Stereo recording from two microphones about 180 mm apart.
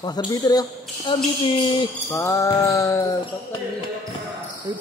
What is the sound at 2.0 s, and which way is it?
Music, 15° left (ahead or behind).